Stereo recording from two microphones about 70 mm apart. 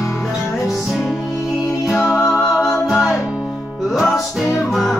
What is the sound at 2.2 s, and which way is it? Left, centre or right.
Music, centre.